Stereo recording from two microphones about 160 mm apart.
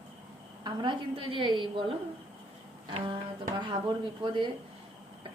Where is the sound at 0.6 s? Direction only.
30° right (ahead or behind).